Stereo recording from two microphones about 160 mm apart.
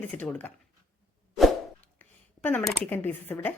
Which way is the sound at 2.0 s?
10° left (ahead or behind).